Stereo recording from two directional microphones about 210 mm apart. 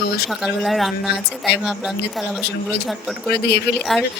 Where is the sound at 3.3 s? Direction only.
50° left (ahead or behind).